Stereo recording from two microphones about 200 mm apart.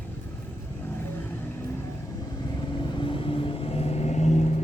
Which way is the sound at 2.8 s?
25° left (ahead or behind).